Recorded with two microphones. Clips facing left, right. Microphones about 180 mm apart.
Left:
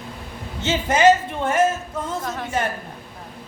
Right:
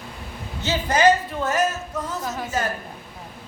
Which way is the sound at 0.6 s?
25° left (ahead or behind).